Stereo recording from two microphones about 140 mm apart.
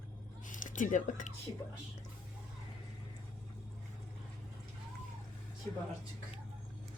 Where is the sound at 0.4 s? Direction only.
65° left (ahead or behind).